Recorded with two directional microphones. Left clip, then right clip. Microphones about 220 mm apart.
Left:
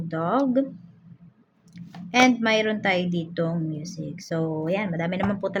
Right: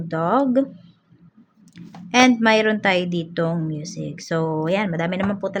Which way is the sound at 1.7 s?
20° right (ahead or behind).